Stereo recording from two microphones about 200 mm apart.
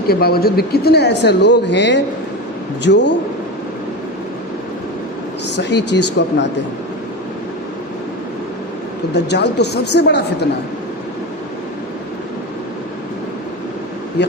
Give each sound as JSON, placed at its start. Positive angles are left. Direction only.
{"t": 0.1, "sound": "speech", "side_deg": 50}
{"t": 5.5, "sound": "speech", "side_deg": 60}
{"t": 9.1, "sound": "speech", "side_deg": 55}
{"t": 14.2, "sound": "speech", "side_deg": 60}